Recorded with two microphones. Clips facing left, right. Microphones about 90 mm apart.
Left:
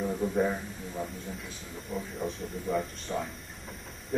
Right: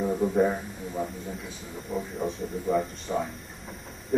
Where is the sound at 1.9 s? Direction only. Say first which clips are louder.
Right 4 dB; centre (ahead or behind).